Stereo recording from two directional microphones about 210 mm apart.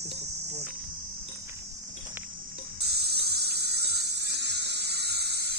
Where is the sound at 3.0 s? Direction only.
50° right (ahead or behind).